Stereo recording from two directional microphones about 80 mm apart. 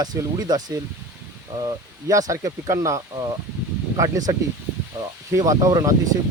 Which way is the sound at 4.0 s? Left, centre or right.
Right.